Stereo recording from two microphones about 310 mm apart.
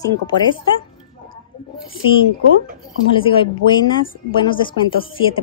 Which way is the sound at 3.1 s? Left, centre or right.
Centre.